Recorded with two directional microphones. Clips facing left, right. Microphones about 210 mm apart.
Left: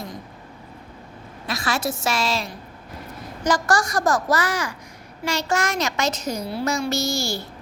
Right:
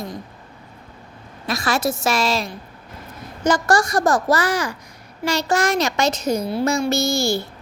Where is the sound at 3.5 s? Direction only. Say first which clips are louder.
Right 3 dB; 25° right (ahead or behind).